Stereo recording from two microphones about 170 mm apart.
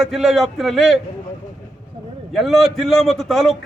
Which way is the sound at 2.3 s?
Centre (ahead or behind).